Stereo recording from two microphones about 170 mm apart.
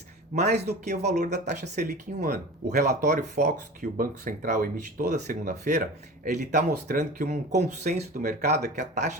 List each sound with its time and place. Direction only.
0.4 s a man's voice: 75° right (ahead or behind)
0.7 s speech: 40° right (ahead or behind)
7.6 s speech: 40° right (ahead or behind)